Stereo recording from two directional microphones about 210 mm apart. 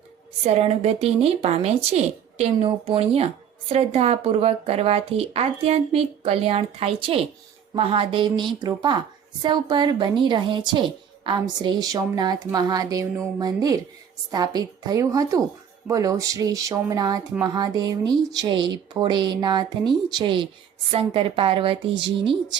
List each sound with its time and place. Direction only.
0.4 s a woman's voice: 30° right (ahead or behind)